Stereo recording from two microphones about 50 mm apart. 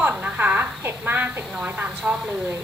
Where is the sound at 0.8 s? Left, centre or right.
Right.